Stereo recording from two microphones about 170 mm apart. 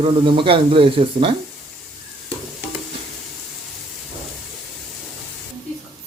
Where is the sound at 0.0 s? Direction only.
30° right (ahead or behind).